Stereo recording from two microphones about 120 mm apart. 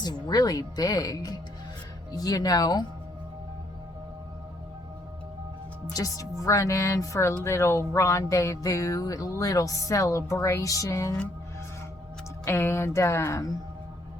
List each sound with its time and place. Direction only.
0.0 s a woman's voice: 35° left (ahead or behind)
5.9 s speech: 30° left (ahead or behind)
12.5 s speech: 20° left (ahead or behind)